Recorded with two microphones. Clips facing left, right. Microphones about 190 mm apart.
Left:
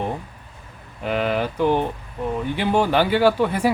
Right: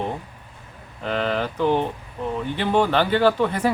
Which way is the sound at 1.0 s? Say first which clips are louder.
Left 2 dB; 10° left (ahead or behind).